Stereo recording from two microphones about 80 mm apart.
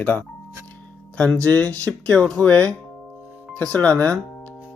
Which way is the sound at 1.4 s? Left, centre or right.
Centre.